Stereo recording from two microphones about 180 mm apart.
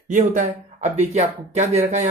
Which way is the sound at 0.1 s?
45° right (ahead or behind).